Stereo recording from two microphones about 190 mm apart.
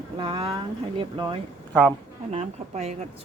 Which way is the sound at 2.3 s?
35° right (ahead or behind).